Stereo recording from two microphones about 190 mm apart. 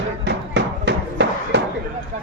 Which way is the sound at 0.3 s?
70° right (ahead or behind).